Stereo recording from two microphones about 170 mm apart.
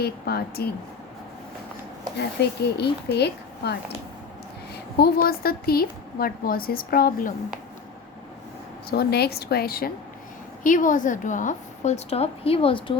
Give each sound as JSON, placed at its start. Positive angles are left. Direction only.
{"t": 0.0, "sound": "speech", "side_deg": 65}
{"t": 2.1, "sound": "a woman's voice", "side_deg": 75}
{"t": 8.9, "sound": "speech", "side_deg": 70}
{"t": 10.6, "sound": "a woman's voice", "side_deg": 50}